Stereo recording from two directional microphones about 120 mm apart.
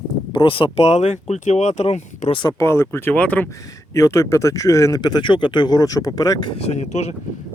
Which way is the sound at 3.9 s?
25° left (ahead or behind).